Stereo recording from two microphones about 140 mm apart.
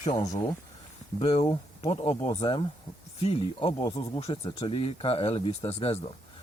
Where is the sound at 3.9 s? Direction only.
45° left (ahead or behind).